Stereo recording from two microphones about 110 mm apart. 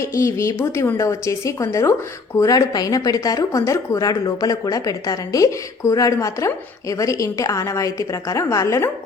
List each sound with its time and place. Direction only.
0.2 s a woman's voice: 25° left (ahead or behind)